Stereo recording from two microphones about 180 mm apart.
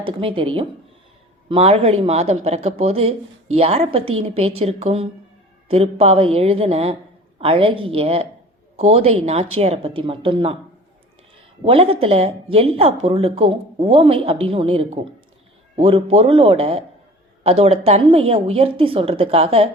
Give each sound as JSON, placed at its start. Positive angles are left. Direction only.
{"t": 0.0, "sound": "speech", "side_deg": -30}
{"t": 11.6, "sound": "speech", "side_deg": -30}